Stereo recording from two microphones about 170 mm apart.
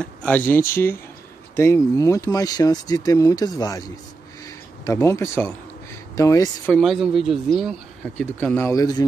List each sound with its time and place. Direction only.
0.0 s a man's voice: 10° left (ahead or behind)
4.8 s a man's voice: 20° left (ahead or behind)
6.7 s a man's voice: centre (ahead or behind); by 9.0 s 20° left (ahead or behind)